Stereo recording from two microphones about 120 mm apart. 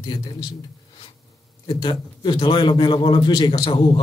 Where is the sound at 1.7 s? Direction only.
40° left (ahead or behind).